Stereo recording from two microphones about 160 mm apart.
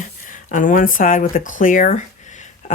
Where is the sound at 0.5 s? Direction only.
55° left (ahead or behind).